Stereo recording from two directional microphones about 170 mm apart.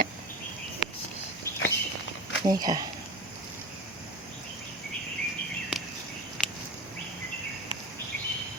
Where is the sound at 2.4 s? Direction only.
25° right (ahead or behind).